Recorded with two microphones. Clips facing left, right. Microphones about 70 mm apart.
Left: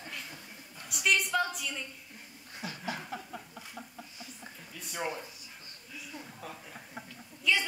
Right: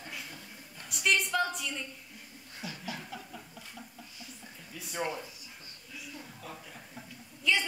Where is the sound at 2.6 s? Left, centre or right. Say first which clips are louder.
Left 2 dB; left.